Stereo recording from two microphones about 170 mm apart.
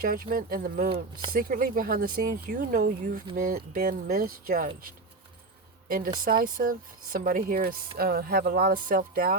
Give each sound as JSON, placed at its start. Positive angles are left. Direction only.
{"t": 0.0, "sound": "speech", "side_deg": -55}
{"t": 0.9, "sound": "speech", "side_deg": -30}
{"t": 1.3, "sound": "speech", "side_deg": -55}
{"t": 6.1, "sound": "speech", "side_deg": -55}